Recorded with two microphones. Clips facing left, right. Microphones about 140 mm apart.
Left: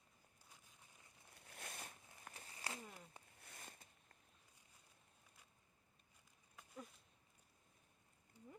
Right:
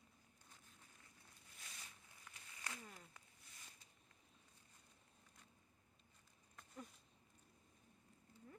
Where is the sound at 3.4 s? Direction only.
55° left (ahead or behind).